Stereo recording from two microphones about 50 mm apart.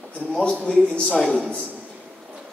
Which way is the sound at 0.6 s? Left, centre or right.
Centre.